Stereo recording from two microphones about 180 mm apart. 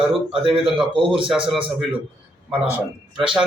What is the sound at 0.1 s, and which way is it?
A man's voice, 30° right (ahead or behind).